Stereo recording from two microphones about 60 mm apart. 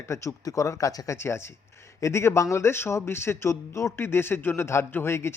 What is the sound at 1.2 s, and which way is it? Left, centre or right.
A man's voice, left.